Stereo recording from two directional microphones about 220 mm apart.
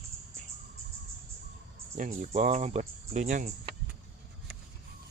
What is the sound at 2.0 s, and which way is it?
Speech, 30° right (ahead or behind).